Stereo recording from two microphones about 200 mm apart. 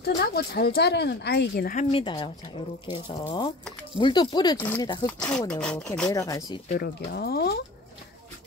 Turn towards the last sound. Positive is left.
turn(degrees=50)  # may be behind; listen again after turning